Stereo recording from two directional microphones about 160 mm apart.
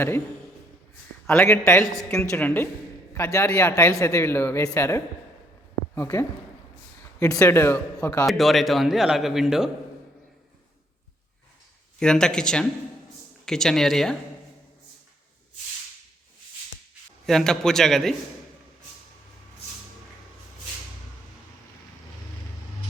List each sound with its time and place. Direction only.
1.3 s speech: 15° left (ahead or behind)
8.3 s speech: centre (ahead or behind)
11.9 s speech: 5° left (ahead or behind)
17.2 s speech: 5° left (ahead or behind)